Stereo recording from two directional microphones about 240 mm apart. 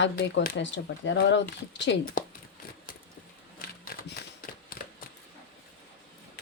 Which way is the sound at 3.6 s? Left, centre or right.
Left.